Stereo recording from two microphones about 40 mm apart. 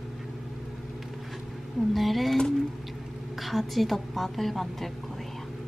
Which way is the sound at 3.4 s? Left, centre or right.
Centre.